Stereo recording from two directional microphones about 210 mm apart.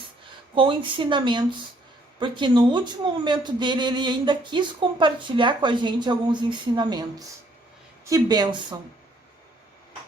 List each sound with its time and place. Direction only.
0.5 s speech: 25° right (ahead or behind)
8.1 s speech: 20° right (ahead or behind)